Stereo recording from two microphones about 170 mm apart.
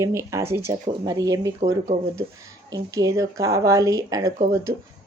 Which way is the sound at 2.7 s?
20° right (ahead or behind).